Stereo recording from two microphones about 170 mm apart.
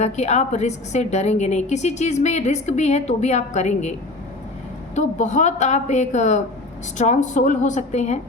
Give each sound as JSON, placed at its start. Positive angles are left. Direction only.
{"t": 0.0, "sound": "a woman's voice", "side_deg": 40}
{"t": 4.9, "sound": "a woman's voice", "side_deg": 45}